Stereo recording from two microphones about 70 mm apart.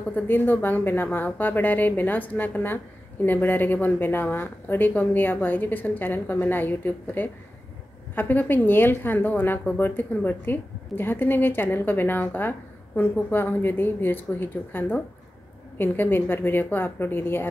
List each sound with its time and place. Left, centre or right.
0.1 s a woman's voice: left